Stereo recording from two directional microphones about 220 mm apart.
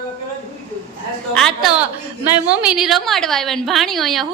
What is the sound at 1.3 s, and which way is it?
A woman's voice, centre (ahead or behind).